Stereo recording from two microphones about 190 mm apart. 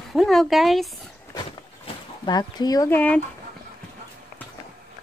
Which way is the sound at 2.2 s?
20° left (ahead or behind).